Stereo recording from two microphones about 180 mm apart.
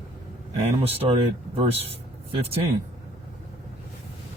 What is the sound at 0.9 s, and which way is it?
Speech, 35° right (ahead or behind).